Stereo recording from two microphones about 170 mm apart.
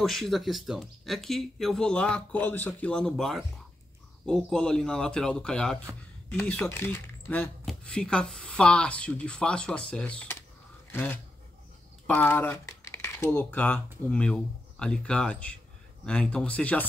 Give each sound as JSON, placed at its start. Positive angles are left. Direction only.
{"t": 0.0, "sound": "speech", "side_deg": 0}